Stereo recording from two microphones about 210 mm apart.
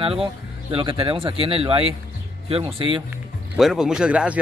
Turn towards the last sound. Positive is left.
turn(degrees=-5)  # may be behind; listen again after turning